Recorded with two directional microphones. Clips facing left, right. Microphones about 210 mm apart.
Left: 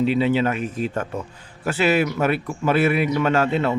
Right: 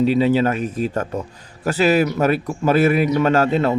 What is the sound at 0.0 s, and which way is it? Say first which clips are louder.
A man's voice: right 3 dB; 40° right (ahead or behind).